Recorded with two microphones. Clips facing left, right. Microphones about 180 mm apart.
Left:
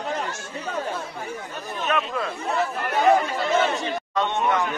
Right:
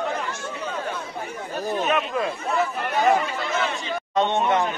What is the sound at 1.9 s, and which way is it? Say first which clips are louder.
Speech: left 2 dB; 10° right (ahead or behind).